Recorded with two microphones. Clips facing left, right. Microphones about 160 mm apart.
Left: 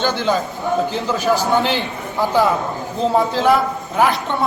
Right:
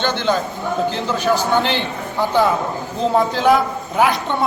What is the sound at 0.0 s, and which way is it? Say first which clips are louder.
Speech: even; 5° left (ahead or behind).